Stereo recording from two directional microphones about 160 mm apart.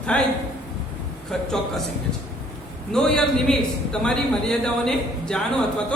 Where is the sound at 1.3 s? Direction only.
5° left (ahead or behind).